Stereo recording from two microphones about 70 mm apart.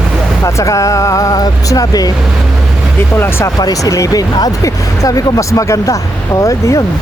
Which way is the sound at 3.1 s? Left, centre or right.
Left.